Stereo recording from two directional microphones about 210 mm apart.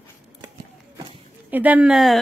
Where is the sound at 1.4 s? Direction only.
10° right (ahead or behind).